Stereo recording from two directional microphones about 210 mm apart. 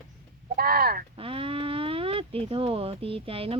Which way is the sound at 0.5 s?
45° right (ahead or behind).